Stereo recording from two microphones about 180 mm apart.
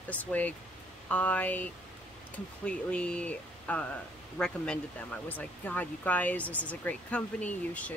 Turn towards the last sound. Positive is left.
turn(degrees=5)  # may be behind; listen again after turning